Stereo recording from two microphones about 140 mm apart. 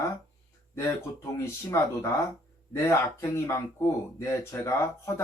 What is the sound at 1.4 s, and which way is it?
Speech, 20° left (ahead or behind).